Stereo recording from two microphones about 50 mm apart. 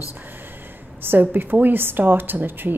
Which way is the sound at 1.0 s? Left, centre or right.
Right.